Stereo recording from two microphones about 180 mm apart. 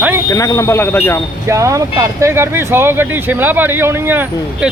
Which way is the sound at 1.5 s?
15° right (ahead or behind).